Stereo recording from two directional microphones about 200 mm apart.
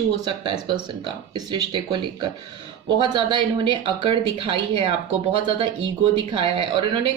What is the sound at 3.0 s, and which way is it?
Speech, 25° right (ahead or behind).